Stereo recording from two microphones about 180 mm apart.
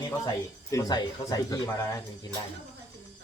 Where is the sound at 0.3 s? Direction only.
20° left (ahead or behind).